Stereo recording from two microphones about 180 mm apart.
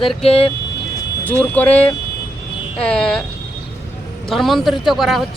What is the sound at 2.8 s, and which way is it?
Speech, 5° left (ahead or behind).